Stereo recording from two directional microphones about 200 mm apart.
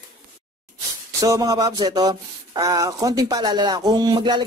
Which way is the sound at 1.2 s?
15° right (ahead or behind).